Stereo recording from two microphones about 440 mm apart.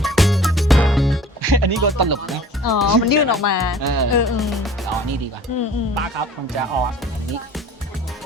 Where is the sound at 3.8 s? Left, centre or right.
Right.